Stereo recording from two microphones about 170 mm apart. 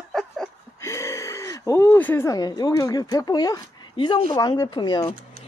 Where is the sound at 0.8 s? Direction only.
15° left (ahead or behind).